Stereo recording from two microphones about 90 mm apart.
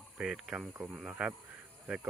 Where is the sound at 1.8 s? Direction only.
20° right (ahead or behind).